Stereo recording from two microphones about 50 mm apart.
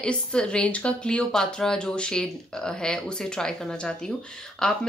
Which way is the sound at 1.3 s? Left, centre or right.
Centre.